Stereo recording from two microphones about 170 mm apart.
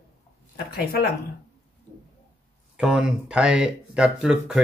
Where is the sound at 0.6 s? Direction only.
65° left (ahead or behind).